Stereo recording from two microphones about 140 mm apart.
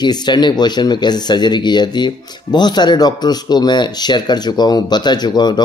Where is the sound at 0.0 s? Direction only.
30° left (ahead or behind).